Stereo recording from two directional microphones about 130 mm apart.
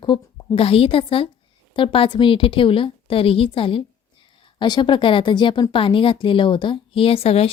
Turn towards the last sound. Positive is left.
turn(degrees=50)  # may be behind; listen again after turning